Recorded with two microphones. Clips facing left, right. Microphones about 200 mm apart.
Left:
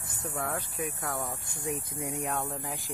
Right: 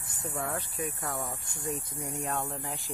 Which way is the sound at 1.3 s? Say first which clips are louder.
Left 1 dB; 20° left (ahead or behind).